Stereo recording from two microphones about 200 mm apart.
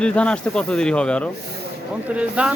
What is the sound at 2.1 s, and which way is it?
Speech, 5° right (ahead or behind).